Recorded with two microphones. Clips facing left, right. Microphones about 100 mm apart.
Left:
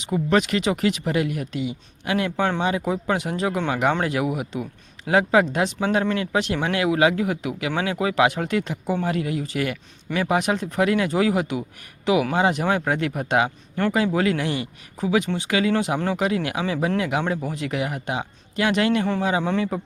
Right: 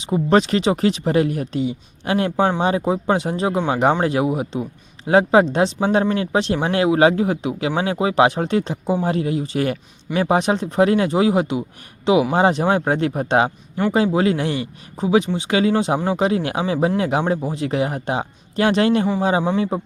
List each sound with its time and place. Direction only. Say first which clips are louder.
0.0 s speech: right 4 dB; 30° right (ahead or behind)